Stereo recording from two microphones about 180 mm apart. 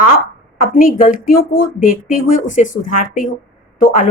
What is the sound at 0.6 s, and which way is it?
Speech, 50° left (ahead or behind).